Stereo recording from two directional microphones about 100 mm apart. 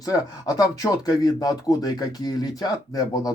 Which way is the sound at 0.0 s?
40° left (ahead or behind).